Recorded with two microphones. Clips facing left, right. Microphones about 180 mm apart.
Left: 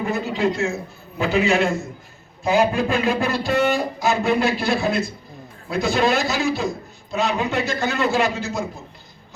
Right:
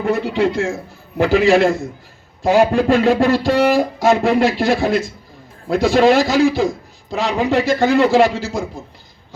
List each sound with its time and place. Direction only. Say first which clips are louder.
0.1 s a man's voice: right 6 dB; 90° right